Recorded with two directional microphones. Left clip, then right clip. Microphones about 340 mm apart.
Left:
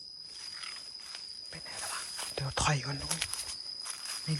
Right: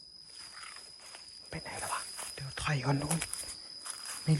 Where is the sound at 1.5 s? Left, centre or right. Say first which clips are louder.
Right 4 dB; centre.